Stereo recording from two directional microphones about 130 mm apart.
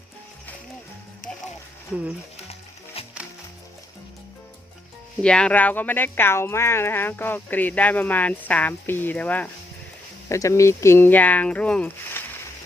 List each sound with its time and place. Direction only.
2.5 s music: 50° left (ahead or behind)
5.2 s speech: 10° left (ahead or behind)
10.2 s speech: 25° left (ahead or behind)